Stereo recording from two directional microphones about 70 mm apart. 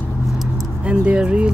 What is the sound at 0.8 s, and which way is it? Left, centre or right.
Speech, centre.